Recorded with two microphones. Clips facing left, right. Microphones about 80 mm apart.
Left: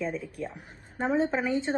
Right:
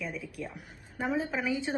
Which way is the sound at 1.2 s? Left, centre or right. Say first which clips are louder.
Left 5 dB; left.